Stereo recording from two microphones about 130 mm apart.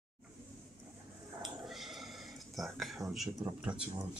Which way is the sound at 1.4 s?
Centre (ahead or behind).